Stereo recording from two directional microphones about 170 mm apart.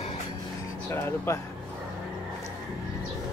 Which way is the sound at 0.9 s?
15° left (ahead or behind).